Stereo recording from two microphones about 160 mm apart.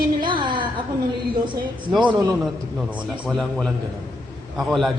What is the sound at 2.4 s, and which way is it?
Speech, 5° right (ahead or behind).